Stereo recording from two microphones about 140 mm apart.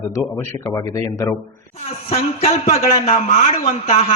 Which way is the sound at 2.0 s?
45° left (ahead or behind).